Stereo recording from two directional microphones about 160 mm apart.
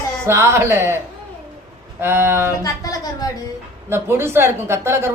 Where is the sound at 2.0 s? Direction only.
15° right (ahead or behind).